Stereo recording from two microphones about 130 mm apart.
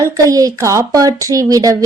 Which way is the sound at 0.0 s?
25° right (ahead or behind).